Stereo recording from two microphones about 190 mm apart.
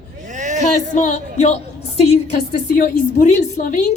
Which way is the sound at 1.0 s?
40° left (ahead or behind).